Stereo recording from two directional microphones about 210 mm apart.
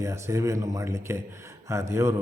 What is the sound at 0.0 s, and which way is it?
Speech, 15° right (ahead or behind).